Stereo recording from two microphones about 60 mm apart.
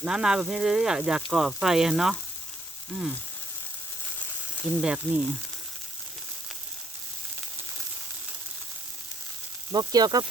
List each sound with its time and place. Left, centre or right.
0.0 s speech: centre
4.8 s speech: centre
9.9 s speech: right